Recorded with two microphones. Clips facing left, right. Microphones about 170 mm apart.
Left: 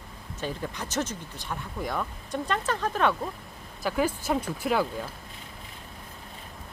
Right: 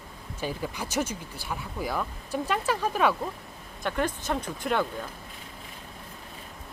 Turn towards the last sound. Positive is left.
turn(degrees=5)  # may be behind; listen again after turning